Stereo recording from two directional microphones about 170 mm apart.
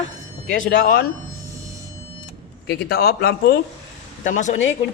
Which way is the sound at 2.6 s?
70° left (ahead or behind).